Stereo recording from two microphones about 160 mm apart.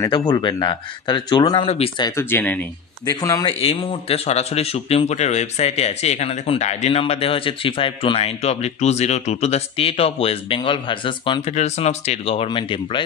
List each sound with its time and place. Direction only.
0.3 s speech: 25° left (ahead or behind)
2.2 s speech: 10° left (ahead or behind)
3.1 s speech: 25° left (ahead or behind)
3.5 s a man's voice: 35° left (ahead or behind)
11.5 s a man's voice: 45° left (ahead or behind)